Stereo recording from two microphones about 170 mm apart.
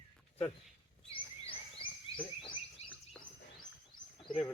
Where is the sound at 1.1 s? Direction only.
30° left (ahead or behind).